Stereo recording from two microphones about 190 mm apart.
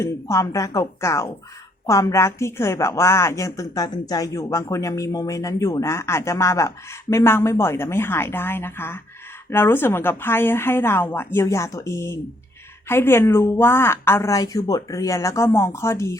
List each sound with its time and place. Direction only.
0.0 s a woman's voice: 15° left (ahead or behind)